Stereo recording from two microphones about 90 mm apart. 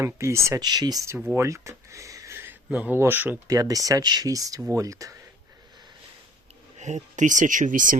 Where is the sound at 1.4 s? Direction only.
35° right (ahead or behind).